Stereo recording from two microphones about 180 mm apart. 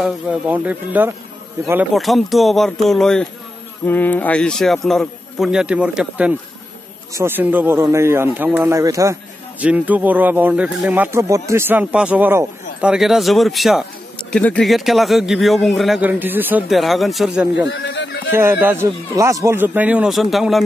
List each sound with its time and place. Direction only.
0.0 s speech: 5° right (ahead or behind)
2.0 s a man's voice: centre (ahead or behind)
17.6 s a sound: 90° left
18.3 s speech: 10° right (ahead or behind)